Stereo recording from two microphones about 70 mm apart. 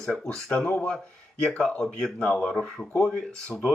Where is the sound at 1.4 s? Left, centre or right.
Centre.